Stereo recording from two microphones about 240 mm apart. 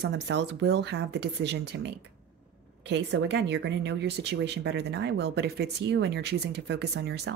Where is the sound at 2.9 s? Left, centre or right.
Right.